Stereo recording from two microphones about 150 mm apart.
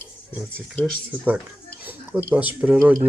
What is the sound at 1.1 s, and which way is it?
Speech, 10° right (ahead or behind).